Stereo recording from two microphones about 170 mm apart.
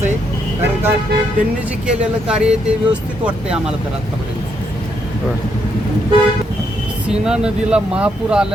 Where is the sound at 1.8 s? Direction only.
5° right (ahead or behind).